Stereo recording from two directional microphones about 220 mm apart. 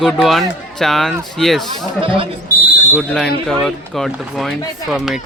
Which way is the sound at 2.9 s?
Centre (ahead or behind).